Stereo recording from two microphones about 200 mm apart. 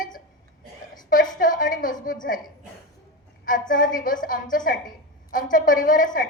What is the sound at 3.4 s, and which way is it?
A woman's voice, 40° left (ahead or behind).